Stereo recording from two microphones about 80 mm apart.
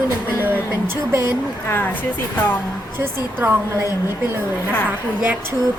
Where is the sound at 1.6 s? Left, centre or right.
Left.